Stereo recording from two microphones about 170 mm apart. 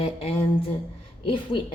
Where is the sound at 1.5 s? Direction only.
30° left (ahead or behind).